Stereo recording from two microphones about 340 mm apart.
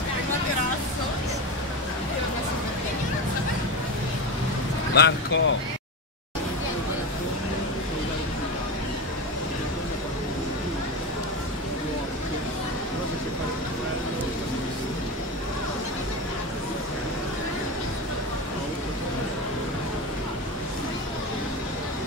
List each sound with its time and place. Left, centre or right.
4.9 s speech: left